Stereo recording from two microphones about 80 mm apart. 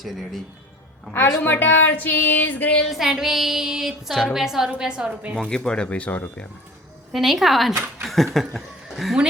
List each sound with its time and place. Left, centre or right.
0.0 s child singing: centre
1.4 s speech: left
2.9 s child singing: centre
4.2 s a woman's voice: centre
5.4 s speech: centre
7.1 s child singing: centre
7.7 s speech: right
8.0 s speech: centre